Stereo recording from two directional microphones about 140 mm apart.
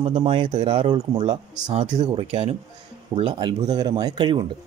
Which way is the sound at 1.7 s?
45° right (ahead or behind).